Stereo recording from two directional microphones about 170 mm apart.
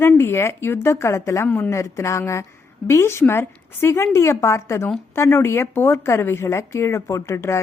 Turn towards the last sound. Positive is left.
turn(degrees=15)  # may be behind; listen again after turning